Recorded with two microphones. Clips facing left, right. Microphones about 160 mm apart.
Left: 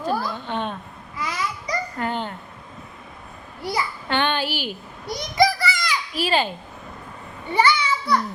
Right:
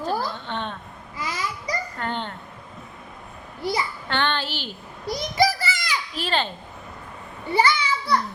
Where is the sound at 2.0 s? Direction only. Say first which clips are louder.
Left 3 dB; 5° left (ahead or behind).